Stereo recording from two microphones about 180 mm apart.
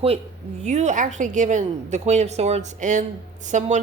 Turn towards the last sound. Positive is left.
turn(degrees=-40)  # may be behind; listen again after turning